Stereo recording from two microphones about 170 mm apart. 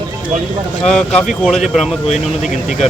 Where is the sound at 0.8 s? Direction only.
5° left (ahead or behind).